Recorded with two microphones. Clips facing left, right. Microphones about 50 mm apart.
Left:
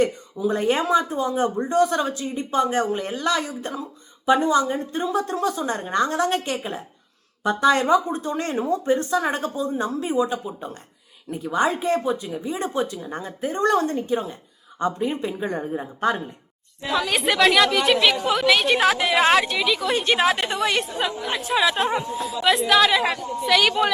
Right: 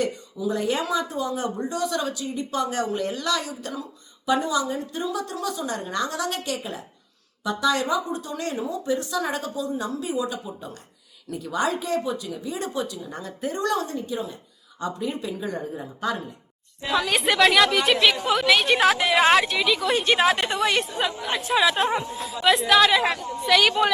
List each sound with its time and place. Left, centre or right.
0.0 s speech: left
16.9 s a woman's voice: centre